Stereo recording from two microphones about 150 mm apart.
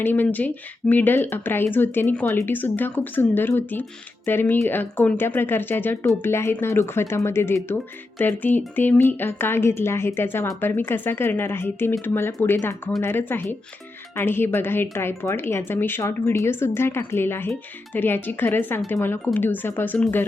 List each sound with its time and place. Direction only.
0.0 s speech: 15° left (ahead or behind)